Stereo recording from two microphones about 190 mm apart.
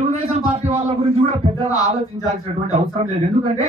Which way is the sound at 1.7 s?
35° right (ahead or behind).